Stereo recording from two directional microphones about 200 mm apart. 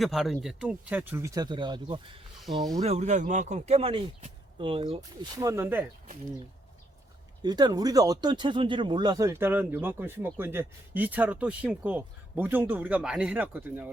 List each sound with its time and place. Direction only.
0.0 s speech: centre (ahead or behind)
7.4 s speech: 20° right (ahead or behind)